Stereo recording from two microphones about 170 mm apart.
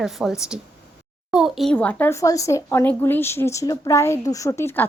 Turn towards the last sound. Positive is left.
turn(degrees=15)  # may be behind; listen again after turning